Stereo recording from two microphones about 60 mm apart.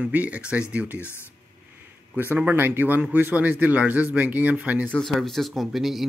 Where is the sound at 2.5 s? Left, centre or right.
Right.